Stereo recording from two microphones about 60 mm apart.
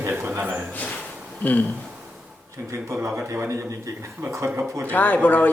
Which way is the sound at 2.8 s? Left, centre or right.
Right.